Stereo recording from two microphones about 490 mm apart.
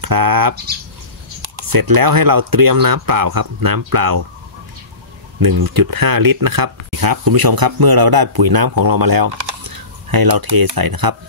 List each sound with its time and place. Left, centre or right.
0.0 s speech: right
5.4 s speech: right